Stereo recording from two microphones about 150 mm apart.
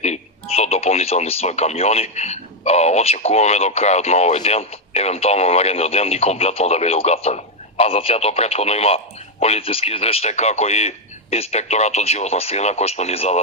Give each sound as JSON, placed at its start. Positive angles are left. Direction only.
{"t": 0.0, "sound": "a man's voice", "side_deg": 45}